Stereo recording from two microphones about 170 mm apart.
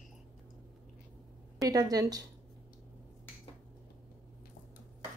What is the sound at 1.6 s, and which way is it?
Speech, 20° right (ahead or behind).